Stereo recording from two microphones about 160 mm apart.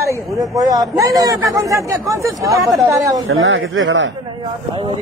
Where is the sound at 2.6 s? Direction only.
Centre (ahead or behind).